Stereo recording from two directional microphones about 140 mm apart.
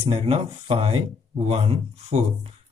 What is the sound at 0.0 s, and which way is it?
Speech, 45° right (ahead or behind).